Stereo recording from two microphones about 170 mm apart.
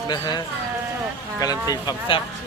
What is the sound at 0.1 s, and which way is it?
Speech, 25° left (ahead or behind).